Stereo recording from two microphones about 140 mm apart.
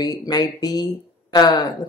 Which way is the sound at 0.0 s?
25° left (ahead or behind).